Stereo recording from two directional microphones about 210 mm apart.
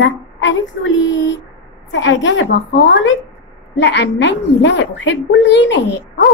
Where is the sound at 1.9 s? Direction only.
60° left (ahead or behind).